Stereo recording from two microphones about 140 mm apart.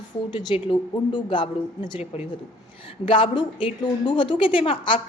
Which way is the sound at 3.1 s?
40° left (ahead or behind).